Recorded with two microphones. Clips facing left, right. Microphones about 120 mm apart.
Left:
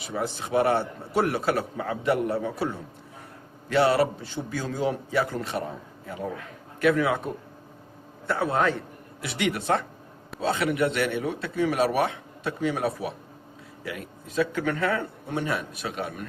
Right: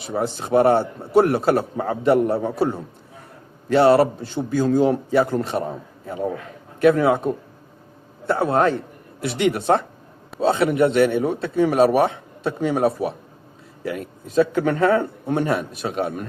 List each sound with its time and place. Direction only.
0.0 s a man's voice: 35° right (ahead or behind)
6.7 s a man's voice: 35° right (ahead or behind)
8.3 s a man's voice: 40° right (ahead or behind)